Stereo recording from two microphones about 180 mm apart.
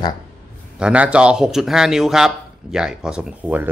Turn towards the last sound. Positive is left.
turn(degrees=-10)  # may be behind; listen again after turning